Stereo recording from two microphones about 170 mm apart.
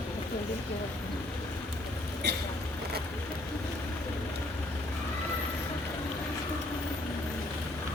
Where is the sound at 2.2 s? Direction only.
80° right.